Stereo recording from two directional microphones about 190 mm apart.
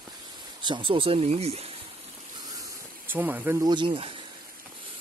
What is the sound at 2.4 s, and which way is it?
Spray, 20° right (ahead or behind).